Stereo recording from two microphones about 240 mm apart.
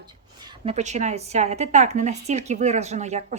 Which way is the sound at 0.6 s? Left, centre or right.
Right.